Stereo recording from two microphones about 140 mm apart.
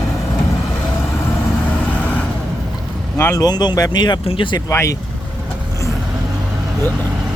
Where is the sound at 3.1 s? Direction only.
20° left (ahead or behind); by 4.6 s 35° left (ahead or behind).